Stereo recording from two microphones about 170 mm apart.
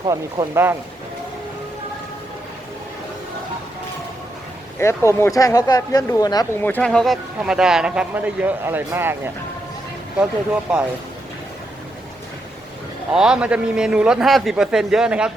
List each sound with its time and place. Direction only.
0.0 s speech: 20° right (ahead or behind)
4.8 s speech: 15° left (ahead or behind)
6.6 s speech: 10° left (ahead or behind); by 10.8 s 5° right (ahead or behind)
13.1 s speech: 5° right (ahead or behind)